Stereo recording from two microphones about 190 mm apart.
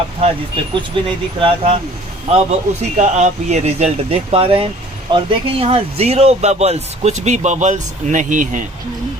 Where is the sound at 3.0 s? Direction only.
35° right (ahead or behind).